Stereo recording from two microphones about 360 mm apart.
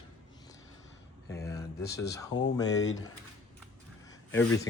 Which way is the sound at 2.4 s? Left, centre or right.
Left.